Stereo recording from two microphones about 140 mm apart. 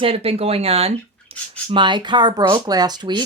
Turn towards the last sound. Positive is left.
turn(degrees=-30)  # may be behind; listen again after turning